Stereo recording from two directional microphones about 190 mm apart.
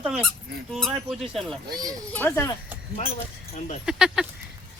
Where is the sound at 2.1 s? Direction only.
10° left (ahead or behind).